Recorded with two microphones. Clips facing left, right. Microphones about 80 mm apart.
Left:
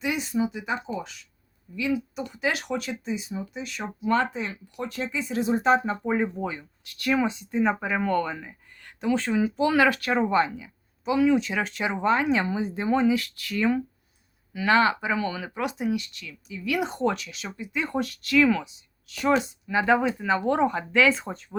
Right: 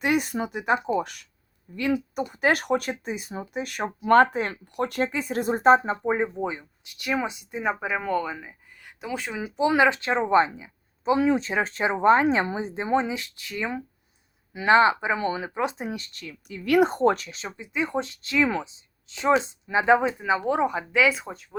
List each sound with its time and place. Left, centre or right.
0.0 s speech: right
6.0 s speech: right
16.6 s speech: right
17.7 s speech: centre